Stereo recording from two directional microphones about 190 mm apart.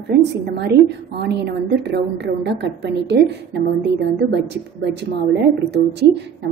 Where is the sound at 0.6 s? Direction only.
60° right (ahead or behind).